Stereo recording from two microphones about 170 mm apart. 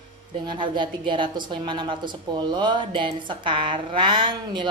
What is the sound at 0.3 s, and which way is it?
A woman's voice, 30° right (ahead or behind).